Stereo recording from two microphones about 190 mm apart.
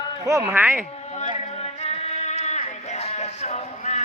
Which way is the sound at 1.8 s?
35° left (ahead or behind).